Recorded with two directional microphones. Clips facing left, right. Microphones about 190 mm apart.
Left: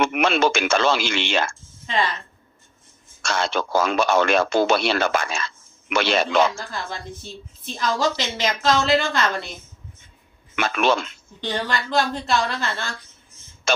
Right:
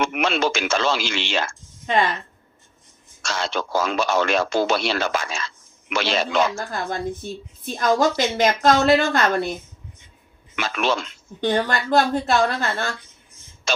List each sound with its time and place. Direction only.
0.0 s speech: 55° left (ahead or behind)
1.9 s a woman's voice: 50° right (ahead or behind)
3.2 s speech: 55° left (ahead or behind)
6.6 s a woman's voice: 50° right (ahead or behind)
10.5 s speech: 55° left (ahead or behind)
11.3 s a woman's voice: 50° right (ahead or behind)
13.7 s a sound: 55° left (ahead or behind)